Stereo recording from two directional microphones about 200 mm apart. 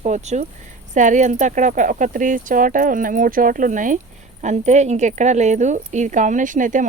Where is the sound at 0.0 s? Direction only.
35° right (ahead or behind).